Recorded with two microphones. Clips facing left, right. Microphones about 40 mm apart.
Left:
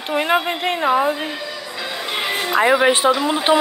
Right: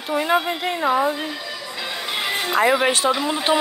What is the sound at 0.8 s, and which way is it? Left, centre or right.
Speech, left.